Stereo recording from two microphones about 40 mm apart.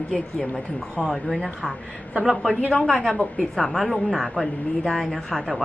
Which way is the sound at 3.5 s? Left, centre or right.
Centre.